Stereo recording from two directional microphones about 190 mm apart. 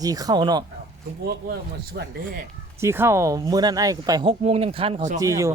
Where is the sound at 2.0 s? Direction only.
60° right (ahead or behind).